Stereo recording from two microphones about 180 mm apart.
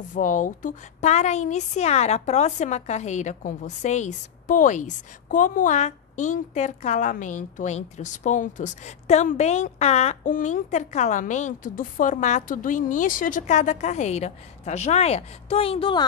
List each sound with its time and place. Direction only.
0.1 s a woman's voice: 45° left (ahead or behind); by 16.1 s 25° left (ahead or behind)